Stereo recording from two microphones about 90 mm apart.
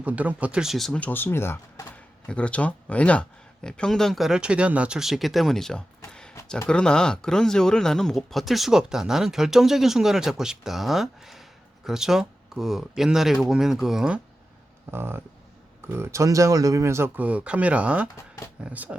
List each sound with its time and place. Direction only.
0.0 s speech: 15° right (ahead or behind); by 0.9 s centre (ahead or behind)
0.9 s speech: 20° left (ahead or behind)
2.2 s speech: 10° left (ahead or behind)
6.1 s a sound: 10° left (ahead or behind)
6.7 s speech: 10° left (ahead or behind)
14.8 s speech: 25° right (ahead or behind)
17.2 s speech: 15° right (ahead or behind)